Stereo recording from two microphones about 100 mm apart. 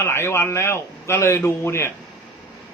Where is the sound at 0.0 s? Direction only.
25° left (ahead or behind).